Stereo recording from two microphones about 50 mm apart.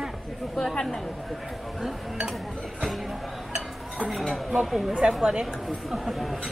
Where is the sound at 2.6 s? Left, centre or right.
Centre.